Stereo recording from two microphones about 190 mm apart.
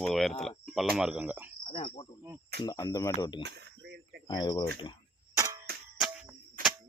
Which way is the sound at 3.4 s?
65° right (ahead or behind).